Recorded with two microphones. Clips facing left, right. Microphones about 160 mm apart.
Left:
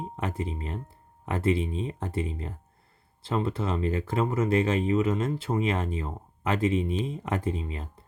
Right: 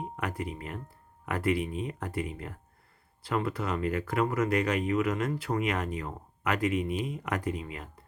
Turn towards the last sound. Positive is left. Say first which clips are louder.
# left 2 dB
turn(degrees=25)  # may be behind; listen again after turning